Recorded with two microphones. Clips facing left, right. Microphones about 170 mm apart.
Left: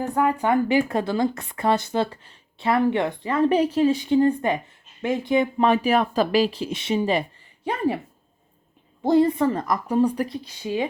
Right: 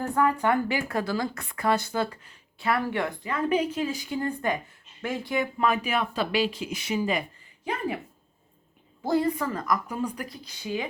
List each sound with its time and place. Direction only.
0.0 s speech: 15° left (ahead or behind)
3.3 s speech: 35° left (ahead or behind)
9.0 s speech: 25° left (ahead or behind)